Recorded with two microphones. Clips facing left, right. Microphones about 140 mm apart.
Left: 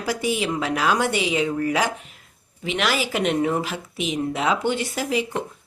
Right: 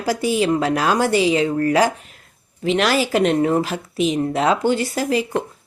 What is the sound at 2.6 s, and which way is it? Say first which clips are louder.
Speech: right 6 dB; 35° right (ahead or behind).